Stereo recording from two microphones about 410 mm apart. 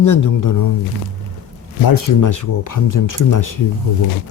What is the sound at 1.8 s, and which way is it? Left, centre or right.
A man's voice, left.